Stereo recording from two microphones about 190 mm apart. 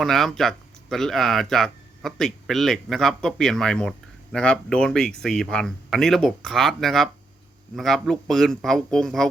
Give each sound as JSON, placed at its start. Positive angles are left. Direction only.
{"t": 0.0, "sound": "speech", "side_deg": 0}